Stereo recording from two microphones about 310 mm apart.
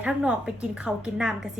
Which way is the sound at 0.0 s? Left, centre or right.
Centre.